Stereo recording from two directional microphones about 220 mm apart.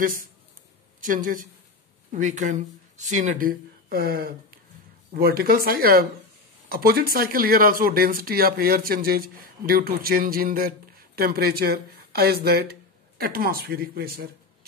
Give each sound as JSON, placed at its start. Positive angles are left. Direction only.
{"t": 0.0, "sound": "speech", "side_deg": -40}